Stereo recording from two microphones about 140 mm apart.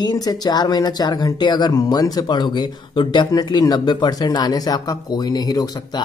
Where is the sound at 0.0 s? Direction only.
30° left (ahead or behind).